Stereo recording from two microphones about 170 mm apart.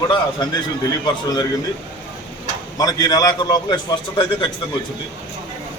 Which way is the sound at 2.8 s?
20° left (ahead or behind).